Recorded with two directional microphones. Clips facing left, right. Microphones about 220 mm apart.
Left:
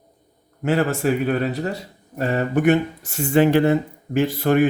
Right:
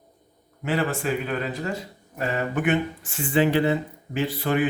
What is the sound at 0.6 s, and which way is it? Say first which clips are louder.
A man's voice: left 5 dB; 45° left (ahead or behind).